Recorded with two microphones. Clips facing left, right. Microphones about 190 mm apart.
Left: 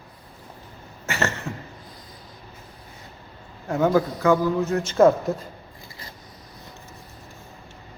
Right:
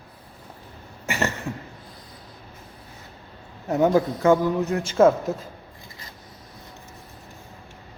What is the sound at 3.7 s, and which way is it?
Speech, 20° right (ahead or behind).